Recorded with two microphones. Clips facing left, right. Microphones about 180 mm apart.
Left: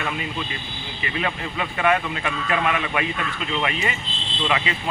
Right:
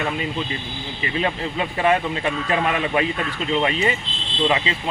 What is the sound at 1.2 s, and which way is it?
Speech, 30° right (ahead or behind).